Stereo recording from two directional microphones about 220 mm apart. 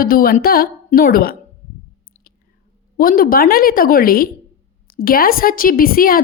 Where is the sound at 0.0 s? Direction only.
40° left (ahead or behind).